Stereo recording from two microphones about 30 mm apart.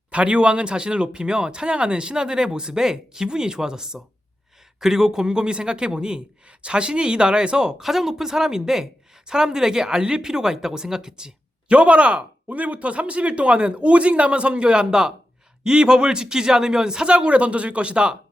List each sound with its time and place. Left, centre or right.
0.1 s speech: right
7.8 s speech: centre
11.7 s speech: right